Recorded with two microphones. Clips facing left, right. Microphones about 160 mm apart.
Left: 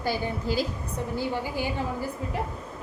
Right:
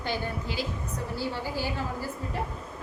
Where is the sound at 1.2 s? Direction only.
15° left (ahead or behind).